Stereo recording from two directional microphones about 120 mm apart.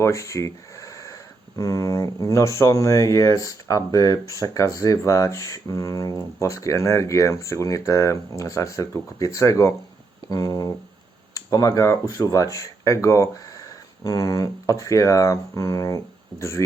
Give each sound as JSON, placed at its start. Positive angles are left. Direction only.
{"t": 0.0, "sound": "speech", "side_deg": 25}